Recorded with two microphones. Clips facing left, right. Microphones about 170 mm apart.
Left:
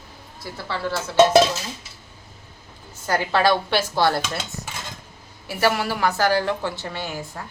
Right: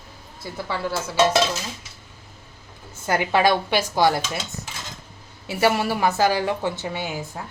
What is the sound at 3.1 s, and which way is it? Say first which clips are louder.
A woman's voice: even; 15° right (ahead or behind).